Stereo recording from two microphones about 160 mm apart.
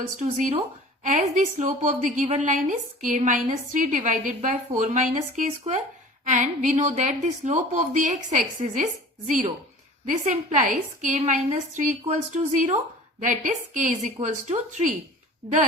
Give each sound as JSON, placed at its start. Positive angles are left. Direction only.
{"t": 0.2, "sound": "a woman's voice", "side_deg": -55}